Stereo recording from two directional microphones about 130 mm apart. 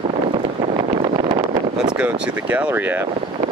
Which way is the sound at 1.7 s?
5° right (ahead or behind).